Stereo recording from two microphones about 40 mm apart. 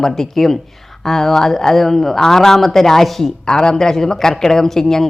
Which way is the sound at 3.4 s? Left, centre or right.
Centre.